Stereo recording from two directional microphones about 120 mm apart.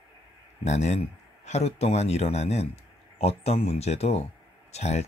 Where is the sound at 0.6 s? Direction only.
70° left (ahead or behind).